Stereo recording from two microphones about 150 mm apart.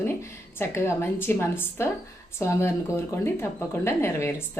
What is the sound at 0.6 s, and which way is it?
Speech, 15° left (ahead or behind).